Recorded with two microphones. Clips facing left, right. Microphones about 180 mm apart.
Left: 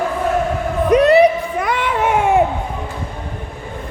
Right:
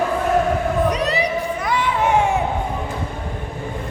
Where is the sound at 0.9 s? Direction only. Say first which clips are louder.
Left 10 dB; 55° left (ahead or behind).